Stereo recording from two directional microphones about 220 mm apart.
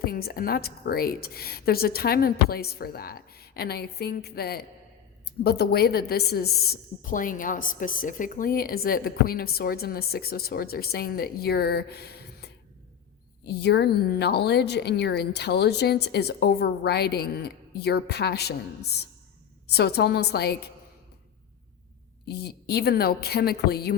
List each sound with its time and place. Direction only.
0.0 s a woman's voice: 45° left (ahead or behind)
22.3 s a woman's voice: 45° left (ahead or behind)